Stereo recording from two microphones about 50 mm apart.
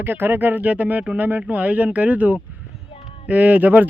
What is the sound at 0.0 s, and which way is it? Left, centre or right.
Speech, right.